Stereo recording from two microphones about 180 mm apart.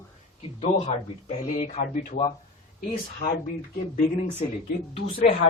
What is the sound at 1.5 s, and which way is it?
Speech, 40° left (ahead or behind).